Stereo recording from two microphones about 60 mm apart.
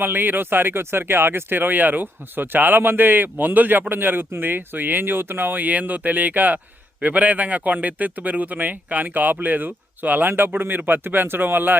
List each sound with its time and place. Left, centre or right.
0.0 s a man's voice: right